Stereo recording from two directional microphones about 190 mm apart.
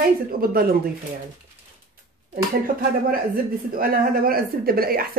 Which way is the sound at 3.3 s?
50° right (ahead or behind).